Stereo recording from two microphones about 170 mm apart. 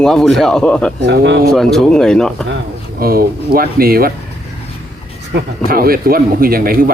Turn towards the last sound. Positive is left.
turn(degrees=-60)  # may be behind; listen again after turning